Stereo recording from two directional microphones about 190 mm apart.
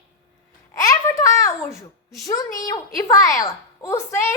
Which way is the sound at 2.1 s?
20° left (ahead or behind).